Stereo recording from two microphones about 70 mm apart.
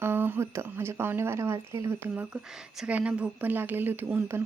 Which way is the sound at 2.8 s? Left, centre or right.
Centre.